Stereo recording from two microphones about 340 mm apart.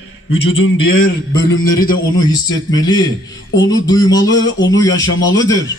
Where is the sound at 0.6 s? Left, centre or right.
Left.